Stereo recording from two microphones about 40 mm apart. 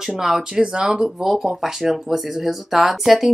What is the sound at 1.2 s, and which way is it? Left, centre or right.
Speech, centre.